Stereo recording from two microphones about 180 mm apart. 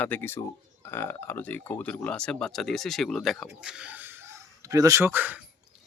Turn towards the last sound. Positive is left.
turn(degrees=-10)  # may be behind; listen again after turning